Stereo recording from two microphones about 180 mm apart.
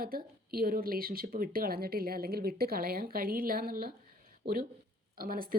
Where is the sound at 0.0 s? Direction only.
55° right (ahead or behind).